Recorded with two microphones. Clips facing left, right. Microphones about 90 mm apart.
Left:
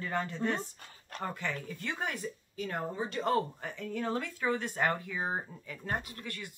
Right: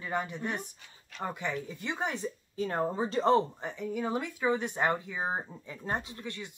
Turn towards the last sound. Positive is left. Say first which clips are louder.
# right 2 dB
turn(degrees=-20)  # may be behind; listen again after turning